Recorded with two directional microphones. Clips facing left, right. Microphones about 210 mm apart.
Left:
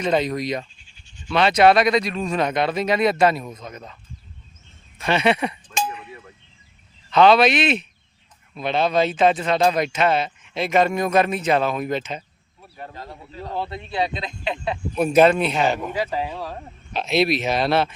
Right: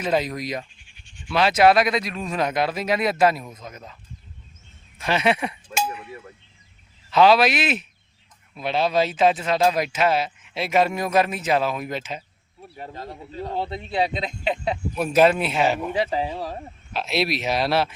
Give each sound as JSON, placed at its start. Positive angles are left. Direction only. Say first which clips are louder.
{"t": 0.0, "sound": "speech", "louder": "left 2 dB", "side_deg": -5}
{"t": 4.9, "sound": "cowbell", "louder": "left 2 dB", "side_deg": 0}
{"t": 7.1, "sound": "speech", "louder": "left 2 dB", "side_deg": -5}
{"t": 12.7, "sound": "speech", "louder": "right 1 dB", "side_deg": -30}
{"t": 14.9, "sound": "speech", "louder": "left 3 dB", "side_deg": 0}
{"t": 16.0, "sound": "speech", "louder": "right 1 dB", "side_deg": -25}
{"t": 16.9, "sound": "speech", "louder": "left 4 dB", "side_deg": 0}